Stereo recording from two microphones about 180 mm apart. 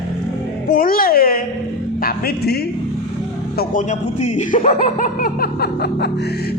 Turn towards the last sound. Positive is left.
turn(degrees=65)  # may be behind; listen again after turning